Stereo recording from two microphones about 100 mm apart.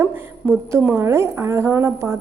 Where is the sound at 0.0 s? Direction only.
20° right (ahead or behind).